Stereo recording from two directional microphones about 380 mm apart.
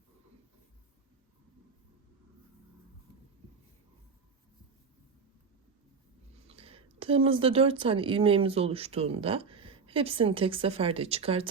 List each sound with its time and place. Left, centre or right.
6.5 s speech: centre